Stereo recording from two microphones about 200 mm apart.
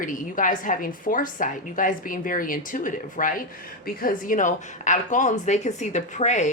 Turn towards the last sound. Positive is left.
turn(degrees=35)  # may be behind; listen again after turning